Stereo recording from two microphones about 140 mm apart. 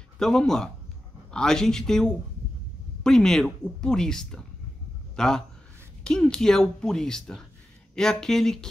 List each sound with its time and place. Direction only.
0.2 s a woman's voice: 5° left (ahead or behind)